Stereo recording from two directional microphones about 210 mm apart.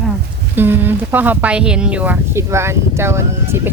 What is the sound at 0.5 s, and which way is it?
Speech, 10° right (ahead or behind).